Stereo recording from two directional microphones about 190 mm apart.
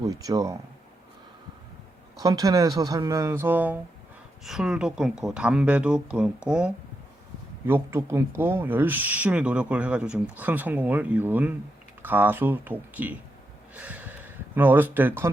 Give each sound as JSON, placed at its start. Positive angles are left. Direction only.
{"t": 0.0, "sound": "speech", "side_deg": -20}
{"t": 2.1, "sound": "speech", "side_deg": -20}